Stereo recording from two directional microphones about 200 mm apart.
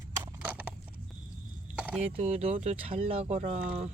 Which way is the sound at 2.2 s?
30° right (ahead or behind).